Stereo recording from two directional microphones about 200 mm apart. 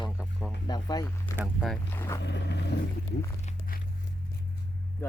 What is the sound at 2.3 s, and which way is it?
Boat, 60° left (ahead or behind).